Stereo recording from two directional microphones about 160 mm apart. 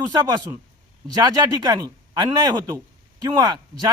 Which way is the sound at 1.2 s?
25° right (ahead or behind).